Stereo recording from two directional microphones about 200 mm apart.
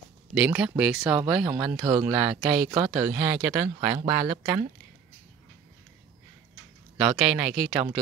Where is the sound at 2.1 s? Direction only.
5° right (ahead or behind).